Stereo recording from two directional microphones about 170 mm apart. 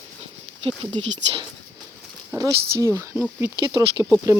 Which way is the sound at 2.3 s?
20° right (ahead or behind).